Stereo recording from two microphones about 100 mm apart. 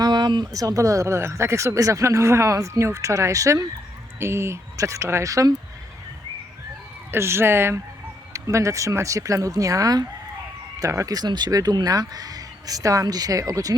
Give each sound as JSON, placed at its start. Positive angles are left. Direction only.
{"t": 0.0, "sound": "speech", "side_deg": -50}
{"t": 7.1, "sound": "speech", "side_deg": -25}